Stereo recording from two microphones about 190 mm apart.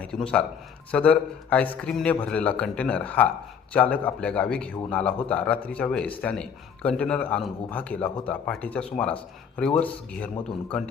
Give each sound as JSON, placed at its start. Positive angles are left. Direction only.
{"t": 0.0, "sound": "a man's voice", "side_deg": 5}